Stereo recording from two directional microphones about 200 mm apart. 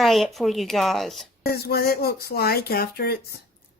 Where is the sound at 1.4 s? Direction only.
50° left (ahead or behind).